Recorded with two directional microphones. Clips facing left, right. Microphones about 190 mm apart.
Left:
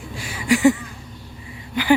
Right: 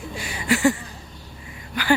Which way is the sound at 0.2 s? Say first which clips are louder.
Even; centre (ahead or behind).